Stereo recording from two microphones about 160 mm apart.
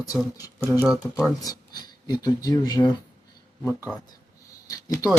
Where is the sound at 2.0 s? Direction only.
25° left (ahead or behind).